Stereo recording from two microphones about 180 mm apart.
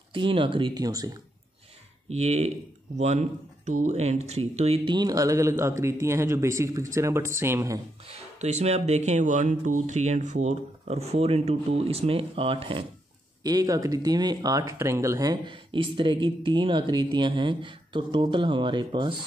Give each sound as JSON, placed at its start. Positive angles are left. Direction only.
{"t": 0.1, "sound": "speech", "side_deg": -30}
{"t": 2.0, "sound": "speech", "side_deg": -40}
{"t": 8.0, "sound": "speech", "side_deg": -35}